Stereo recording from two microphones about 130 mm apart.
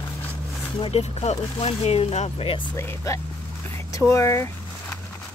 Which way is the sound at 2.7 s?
20° left (ahead or behind).